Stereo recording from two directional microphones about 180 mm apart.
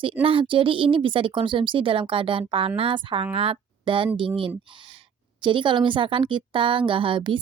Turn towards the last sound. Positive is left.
turn(degrees=-30)  # may be behind; listen again after turning